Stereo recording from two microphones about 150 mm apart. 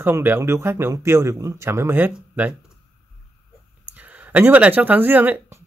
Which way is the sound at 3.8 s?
10° right (ahead or behind).